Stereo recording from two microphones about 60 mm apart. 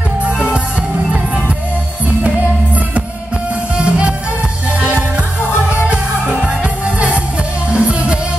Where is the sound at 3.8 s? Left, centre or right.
Centre.